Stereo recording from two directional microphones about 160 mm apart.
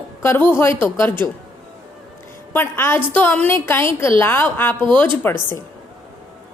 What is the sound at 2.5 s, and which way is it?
Speech, 15° left (ahead or behind).